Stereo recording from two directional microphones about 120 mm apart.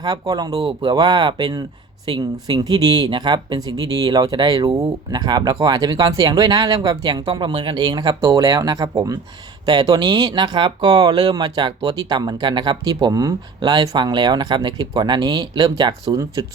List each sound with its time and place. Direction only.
0.0 s speech: 35° right (ahead or behind)